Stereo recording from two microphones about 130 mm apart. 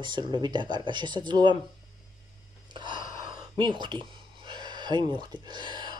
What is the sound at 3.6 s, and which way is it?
Speech, 35° right (ahead or behind).